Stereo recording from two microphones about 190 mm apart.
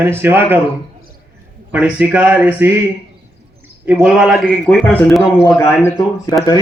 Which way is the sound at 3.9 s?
5° right (ahead or behind).